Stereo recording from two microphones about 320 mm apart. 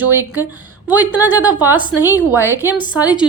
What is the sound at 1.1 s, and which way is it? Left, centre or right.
A woman's voice, centre.